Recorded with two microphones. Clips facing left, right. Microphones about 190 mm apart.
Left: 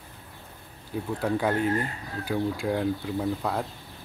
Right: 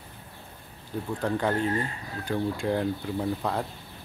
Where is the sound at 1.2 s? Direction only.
10° left (ahead or behind).